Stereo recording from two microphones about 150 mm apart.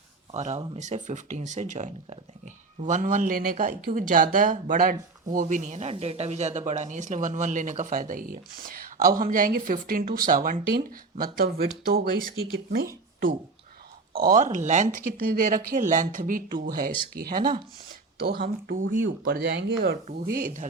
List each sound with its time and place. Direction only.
0.3 s speech: 50° right (ahead or behind); by 10.6 s 65° right (ahead or behind)
10.7 s speech: 75° right (ahead or behind)
14.3 s speech: 55° right (ahead or behind)
18.2 s speech: 85° right; by 18.9 s 65° right (ahead or behind)
19.2 s speech: 85° right
20.3 s speech: 60° right (ahead or behind)